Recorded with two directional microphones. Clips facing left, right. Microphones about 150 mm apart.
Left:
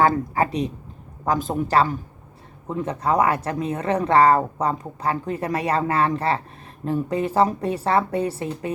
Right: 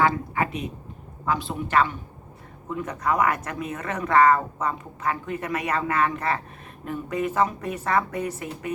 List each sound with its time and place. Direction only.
0.0 s speech: 35° left (ahead or behind)